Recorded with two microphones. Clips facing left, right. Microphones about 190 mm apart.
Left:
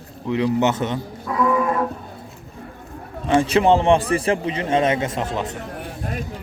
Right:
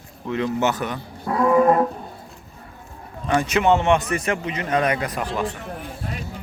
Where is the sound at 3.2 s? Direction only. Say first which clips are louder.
Left 3 dB; 30° left (ahead or behind).